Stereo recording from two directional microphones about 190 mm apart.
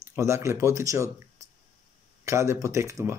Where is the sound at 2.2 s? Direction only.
15° right (ahead or behind).